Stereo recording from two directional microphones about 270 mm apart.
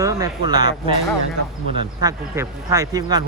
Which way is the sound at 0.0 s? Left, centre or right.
Centre.